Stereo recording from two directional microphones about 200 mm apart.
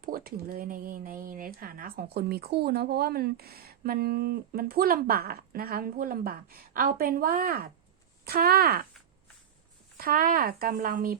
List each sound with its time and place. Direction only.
0.0 s speech: 45° right (ahead or behind)
10.0 s speech: 45° right (ahead or behind)